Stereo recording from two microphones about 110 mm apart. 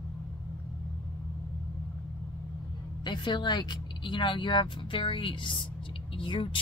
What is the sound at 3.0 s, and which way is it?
Speech, 45° left (ahead or behind).